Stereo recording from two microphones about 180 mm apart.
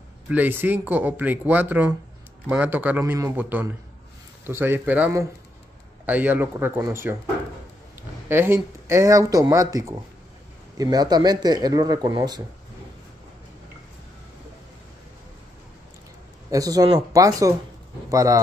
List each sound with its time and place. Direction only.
0.3 s speech: 10° right (ahead or behind)
8.3 s speech: 15° right (ahead or behind)
16.4 s speech: 20° right (ahead or behind)